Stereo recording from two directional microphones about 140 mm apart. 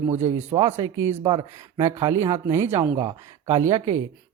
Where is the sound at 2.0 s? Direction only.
20° right (ahead or behind).